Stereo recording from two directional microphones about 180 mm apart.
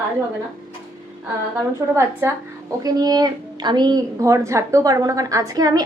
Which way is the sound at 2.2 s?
15° right (ahead or behind).